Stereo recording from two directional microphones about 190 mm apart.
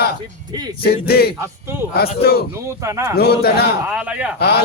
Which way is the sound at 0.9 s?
55° left (ahead or behind).